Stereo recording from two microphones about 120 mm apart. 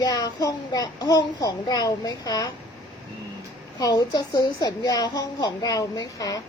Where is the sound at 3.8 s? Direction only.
30° left (ahead or behind).